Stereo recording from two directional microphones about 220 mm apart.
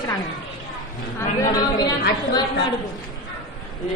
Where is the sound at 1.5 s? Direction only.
20° left (ahead or behind).